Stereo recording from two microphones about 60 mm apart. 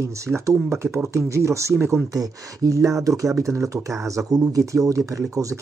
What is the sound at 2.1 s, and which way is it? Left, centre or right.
Speech, right.